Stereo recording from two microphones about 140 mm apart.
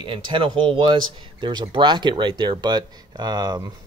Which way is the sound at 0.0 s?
40° right (ahead or behind).